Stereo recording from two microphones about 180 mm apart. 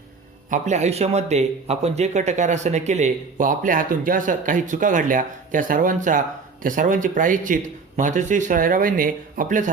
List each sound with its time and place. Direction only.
0.5 s speech: 40° right (ahead or behind)